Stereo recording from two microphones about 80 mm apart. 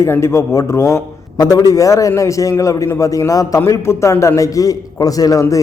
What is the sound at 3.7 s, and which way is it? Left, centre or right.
A man's voice, left.